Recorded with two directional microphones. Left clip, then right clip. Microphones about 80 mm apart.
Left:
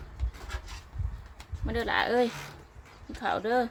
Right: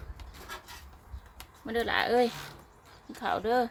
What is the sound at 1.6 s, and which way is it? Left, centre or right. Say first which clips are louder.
Speech: even; centre.